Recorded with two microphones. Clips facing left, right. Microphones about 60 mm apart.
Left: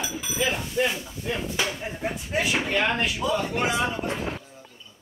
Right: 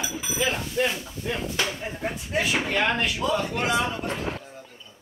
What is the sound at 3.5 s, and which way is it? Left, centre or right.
Speech, centre.